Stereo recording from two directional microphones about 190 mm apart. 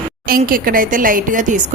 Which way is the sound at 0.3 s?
50° right (ahead or behind).